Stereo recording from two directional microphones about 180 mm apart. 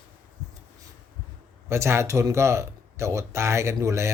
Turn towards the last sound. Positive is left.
turn(degrees=-15)  # may be behind; listen again after turning